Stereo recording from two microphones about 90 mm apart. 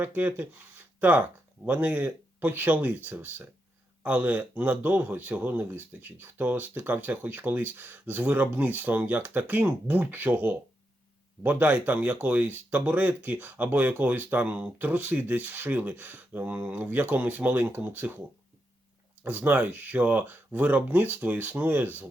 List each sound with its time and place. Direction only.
0.0 s speech: 20° right (ahead or behind)
19.2 s speech: 20° right (ahead or behind)